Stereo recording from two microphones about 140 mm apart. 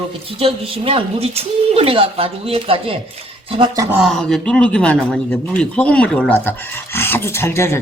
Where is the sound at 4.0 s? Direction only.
Centre (ahead or behind).